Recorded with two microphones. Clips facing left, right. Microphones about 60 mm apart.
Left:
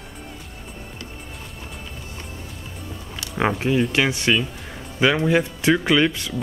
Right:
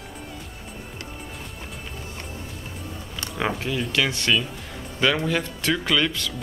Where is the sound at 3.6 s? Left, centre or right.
Left.